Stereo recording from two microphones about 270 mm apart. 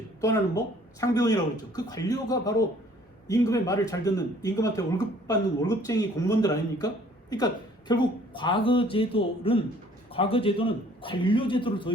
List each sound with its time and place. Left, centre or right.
0.9 s a man's voice: centre